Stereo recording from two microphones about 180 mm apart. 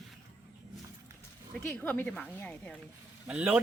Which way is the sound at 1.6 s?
5° left (ahead or behind).